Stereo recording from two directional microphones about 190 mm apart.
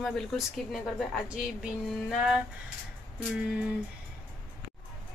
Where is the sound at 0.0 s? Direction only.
Centre (ahead or behind).